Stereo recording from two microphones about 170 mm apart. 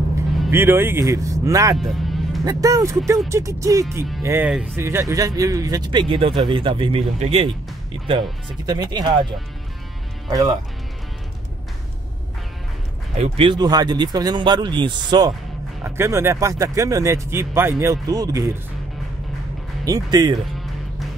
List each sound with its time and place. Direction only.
0.5 s speech: 15° right (ahead or behind)
1.8 s music: centre (ahead or behind)
2.4 s speech: 20° right (ahead or behind)
13.2 s speech: 30° right (ahead or behind)
19.8 s speech: 20° right (ahead or behind)